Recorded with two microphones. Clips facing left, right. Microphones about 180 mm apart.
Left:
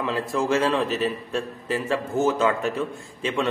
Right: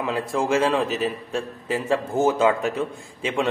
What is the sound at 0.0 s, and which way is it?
A man's voice, 10° right (ahead or behind).